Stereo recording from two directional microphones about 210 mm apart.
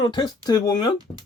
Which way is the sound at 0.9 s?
20° right (ahead or behind).